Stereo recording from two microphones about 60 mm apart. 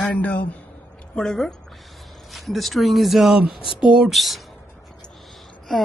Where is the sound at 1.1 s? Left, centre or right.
Centre.